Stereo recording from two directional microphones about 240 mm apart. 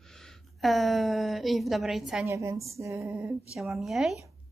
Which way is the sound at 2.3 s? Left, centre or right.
Centre.